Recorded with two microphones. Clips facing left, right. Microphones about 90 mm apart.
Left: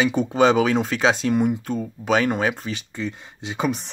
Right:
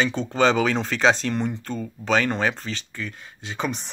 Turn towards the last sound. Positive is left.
turn(degrees=20)  # may be behind; listen again after turning